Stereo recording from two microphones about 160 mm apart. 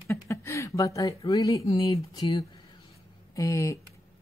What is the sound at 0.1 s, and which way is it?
A woman's voice, 15° left (ahead or behind).